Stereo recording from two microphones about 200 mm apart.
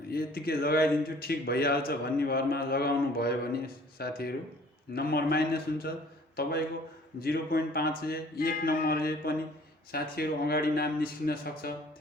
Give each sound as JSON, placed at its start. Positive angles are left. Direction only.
{"t": 0.1, "sound": "a man's voice", "side_deg": 50}